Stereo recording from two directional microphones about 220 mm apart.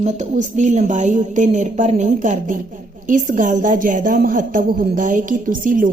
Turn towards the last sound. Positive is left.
turn(degrees=-35)  # may be behind; listen again after turning